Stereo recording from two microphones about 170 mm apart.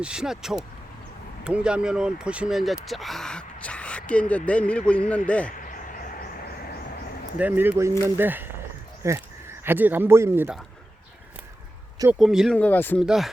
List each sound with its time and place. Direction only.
0.0 s speech: 5° right (ahead or behind)
5.5 s a sound: 50° left (ahead or behind)
7.3 s speech: 10° right (ahead or behind)
12.2 s speech: centre (ahead or behind)
12.5 s speech: 10° left (ahead or behind)
13.0 s speech: centre (ahead or behind)